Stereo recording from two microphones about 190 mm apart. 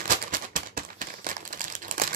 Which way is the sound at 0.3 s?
45° right (ahead or behind).